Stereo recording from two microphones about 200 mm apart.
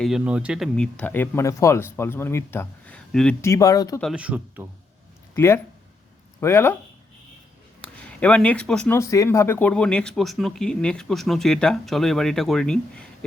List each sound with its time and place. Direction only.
0.0 s speech: 5° right (ahead or behind)
3.4 s speech: 15° left (ahead or behind)
4.0 s speech: 5° right (ahead or behind)
5.3 s speech: 10° left (ahead or behind)
7.8 s speech: 5° left (ahead or behind)